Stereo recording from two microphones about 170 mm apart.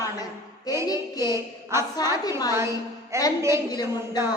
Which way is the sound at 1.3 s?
15° right (ahead or behind).